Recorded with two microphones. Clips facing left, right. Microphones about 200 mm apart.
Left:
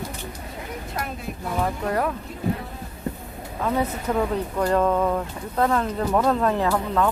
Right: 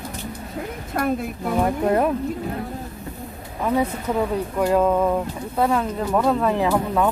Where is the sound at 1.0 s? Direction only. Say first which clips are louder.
Right 10 dB; 55° right (ahead or behind).